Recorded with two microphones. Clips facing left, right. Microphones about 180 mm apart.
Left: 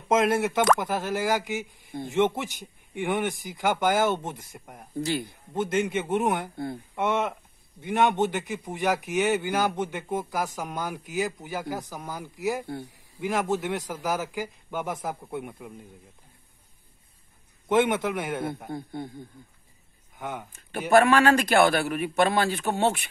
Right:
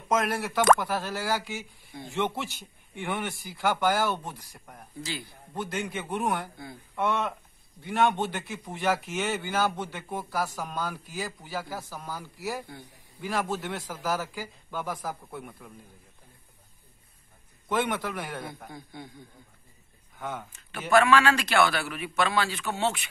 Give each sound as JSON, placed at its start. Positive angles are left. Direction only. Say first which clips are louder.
{"t": 0.1, "sound": "a man's voice", "louder": "left 5 dB", "side_deg": 25}
{"t": 17.6, "sound": "speech", "louder": "left 6 dB", "side_deg": 20}
{"t": 18.7, "sound": "a man's voice", "louder": "left 9 dB", "side_deg": 55}
{"t": 20.2, "sound": "speech", "louder": "left 1 dB", "side_deg": 15}
{"t": 20.9, "sound": "a man's voice", "louder": "left 3 dB", "side_deg": 55}